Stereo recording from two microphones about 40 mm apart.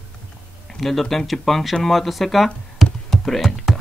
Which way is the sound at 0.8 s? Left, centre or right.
Centre.